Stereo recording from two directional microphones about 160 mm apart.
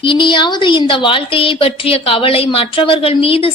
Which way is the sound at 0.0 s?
30° left (ahead or behind).